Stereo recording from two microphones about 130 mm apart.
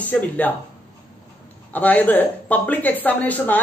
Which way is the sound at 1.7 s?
15° left (ahead or behind).